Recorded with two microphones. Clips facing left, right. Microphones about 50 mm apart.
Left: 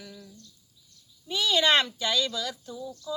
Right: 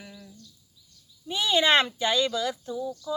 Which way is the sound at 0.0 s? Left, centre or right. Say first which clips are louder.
Even; right.